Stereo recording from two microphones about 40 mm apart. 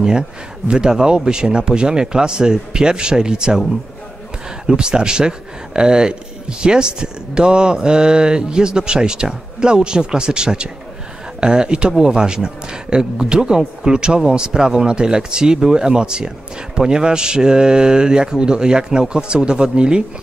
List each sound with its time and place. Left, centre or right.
0.7 s speech: centre
4.6 s speech: right